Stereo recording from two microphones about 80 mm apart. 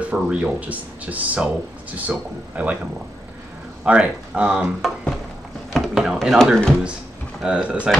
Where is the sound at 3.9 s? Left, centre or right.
Centre.